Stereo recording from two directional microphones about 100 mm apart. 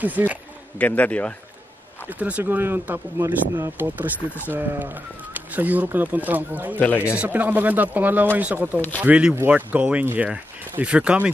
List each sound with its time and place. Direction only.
0.0 s speech: 15° right (ahead or behind)
0.7 s a man's voice: 15° left (ahead or behind)
2.0 s speech: 15° right (ahead or behind)